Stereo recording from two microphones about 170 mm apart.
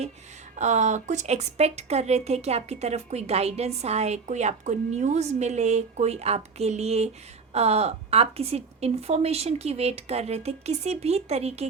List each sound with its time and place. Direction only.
0.5 s speech: 45° right (ahead or behind)